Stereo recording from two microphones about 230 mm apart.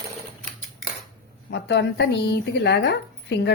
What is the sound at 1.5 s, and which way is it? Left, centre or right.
Speech, left.